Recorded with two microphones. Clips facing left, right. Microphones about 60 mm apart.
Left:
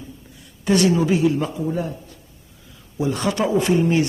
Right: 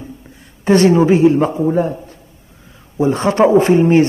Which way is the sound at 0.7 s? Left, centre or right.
Right.